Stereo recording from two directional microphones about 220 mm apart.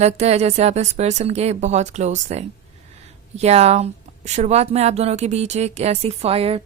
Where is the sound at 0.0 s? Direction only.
30° right (ahead or behind).